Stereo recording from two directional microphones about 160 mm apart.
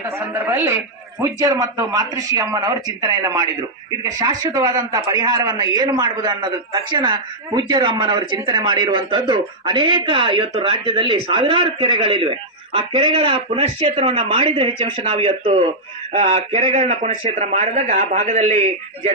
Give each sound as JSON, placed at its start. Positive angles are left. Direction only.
{"t": 0.2, "sound": "a woman's voice", "side_deg": -15}
{"t": 16.8, "sound": "speech", "side_deg": -55}